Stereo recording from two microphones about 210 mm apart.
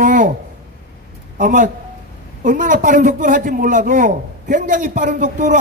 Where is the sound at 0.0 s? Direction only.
40° right (ahead or behind).